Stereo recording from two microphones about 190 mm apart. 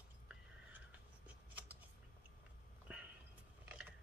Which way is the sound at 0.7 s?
10° right (ahead or behind).